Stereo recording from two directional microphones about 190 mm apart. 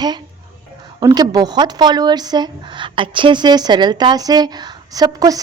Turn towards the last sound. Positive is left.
turn(degrees=-20)  # may be behind; listen again after turning